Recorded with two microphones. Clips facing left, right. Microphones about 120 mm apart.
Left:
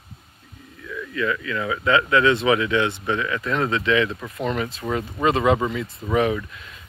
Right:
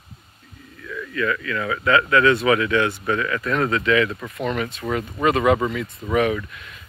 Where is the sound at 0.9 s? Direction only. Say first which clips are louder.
Right 1 dB; 20° left (ahead or behind).